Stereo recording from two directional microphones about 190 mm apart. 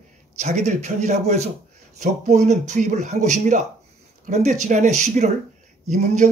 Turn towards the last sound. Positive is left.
turn(degrees=-40)  # may be behind; listen again after turning